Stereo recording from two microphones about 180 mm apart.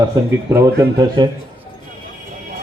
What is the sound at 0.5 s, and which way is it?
Speech, 20° right (ahead or behind).